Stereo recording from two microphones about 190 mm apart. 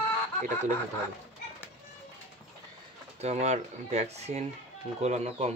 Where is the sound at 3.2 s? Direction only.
35° right (ahead or behind).